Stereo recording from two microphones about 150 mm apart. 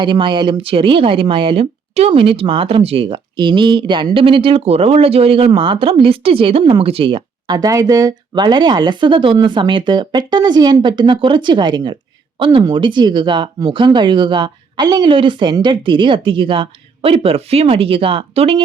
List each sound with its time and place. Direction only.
0.0 s speech: 30° right (ahead or behind)